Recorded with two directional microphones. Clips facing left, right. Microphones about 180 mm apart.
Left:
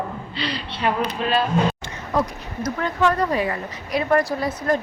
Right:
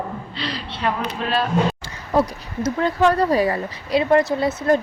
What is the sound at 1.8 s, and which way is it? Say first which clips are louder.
Speech: right 3 dB; 30° right (ahead or behind).